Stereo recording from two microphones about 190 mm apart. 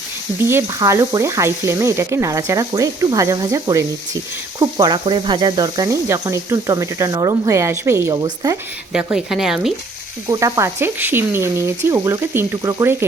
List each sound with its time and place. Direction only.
0.3 s speech: 15° right (ahead or behind)
8.9 s speech: 5° right (ahead or behind)
10.2 s speech: 15° right (ahead or behind)